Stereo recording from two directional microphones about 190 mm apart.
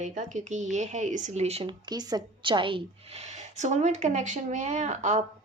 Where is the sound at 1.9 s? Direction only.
20° right (ahead or behind).